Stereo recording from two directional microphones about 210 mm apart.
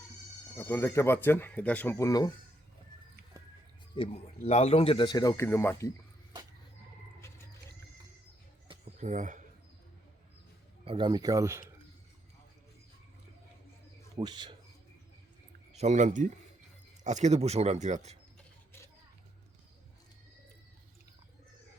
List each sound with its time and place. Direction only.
0.5 s speech: 10° left (ahead or behind)
3.9 s speech: 25° left (ahead or behind)
8.6 s a sound: 25° right (ahead or behind)
10.8 s speech: 20° right (ahead or behind)
14.2 s speech: 20° right (ahead or behind)
15.8 s speech: 35° right (ahead or behind)